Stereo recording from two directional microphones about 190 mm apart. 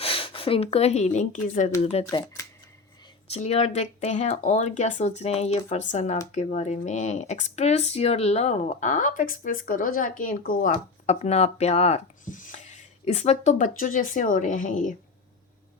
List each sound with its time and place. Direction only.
0.0 s speech: 30° left (ahead or behind)
2.0 s speech: 15° left (ahead or behind)
3.3 s speech: 35° left (ahead or behind)